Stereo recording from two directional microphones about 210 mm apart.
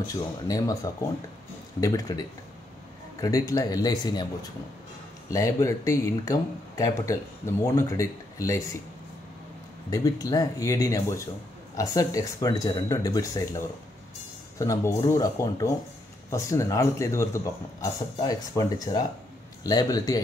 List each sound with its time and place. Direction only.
0.0 s speech: 15° left (ahead or behind)
9.8 s speech: 15° left (ahead or behind)